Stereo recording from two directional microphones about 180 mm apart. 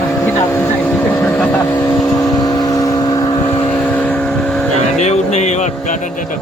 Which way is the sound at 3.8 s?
10° left (ahead or behind).